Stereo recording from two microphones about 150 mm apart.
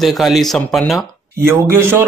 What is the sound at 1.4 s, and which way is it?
Speech, 15° right (ahead or behind).